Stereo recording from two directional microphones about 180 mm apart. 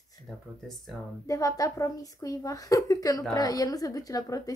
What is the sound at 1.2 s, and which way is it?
A woman's voice, 20° left (ahead or behind).